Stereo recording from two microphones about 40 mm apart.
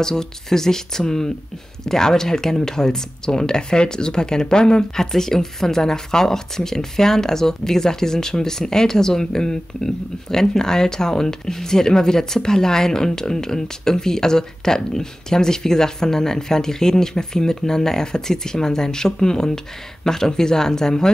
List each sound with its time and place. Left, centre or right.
0.0 s speech: centre